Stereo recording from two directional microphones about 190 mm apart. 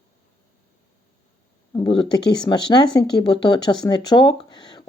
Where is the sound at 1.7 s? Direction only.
25° left (ahead or behind).